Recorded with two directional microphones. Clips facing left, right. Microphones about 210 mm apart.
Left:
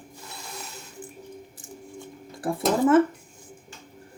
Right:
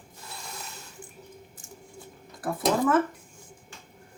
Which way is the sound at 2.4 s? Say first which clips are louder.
Left 3 dB; 25° left (ahead or behind).